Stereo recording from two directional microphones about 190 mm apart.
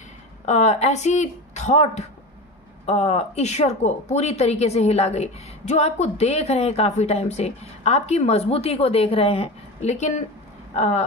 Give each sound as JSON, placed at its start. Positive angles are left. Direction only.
{"t": 0.5, "sound": "a woman's voice", "side_deg": 35}
{"t": 10.7, "sound": "vehicle", "side_deg": 35}